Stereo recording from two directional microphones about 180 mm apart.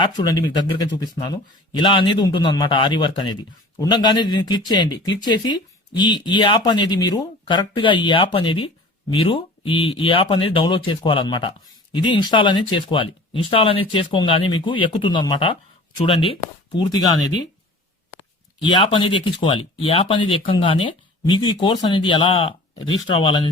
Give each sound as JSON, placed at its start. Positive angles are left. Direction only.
{"t": 0.0, "sound": "speech", "side_deg": 25}
{"t": 18.8, "sound": "speech", "side_deg": 30}